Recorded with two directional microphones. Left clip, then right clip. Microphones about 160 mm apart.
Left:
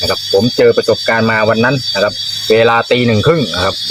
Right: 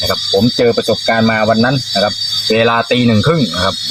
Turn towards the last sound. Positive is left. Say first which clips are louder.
# left 2 dB
turn(degrees=25)  # may be behind; listen again after turning